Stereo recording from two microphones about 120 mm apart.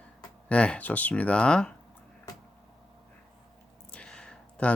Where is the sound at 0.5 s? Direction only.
10° left (ahead or behind).